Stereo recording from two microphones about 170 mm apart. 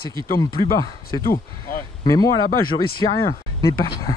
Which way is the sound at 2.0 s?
20° left (ahead or behind).